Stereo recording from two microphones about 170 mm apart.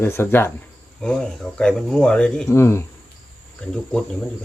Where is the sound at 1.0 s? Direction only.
Centre (ahead or behind).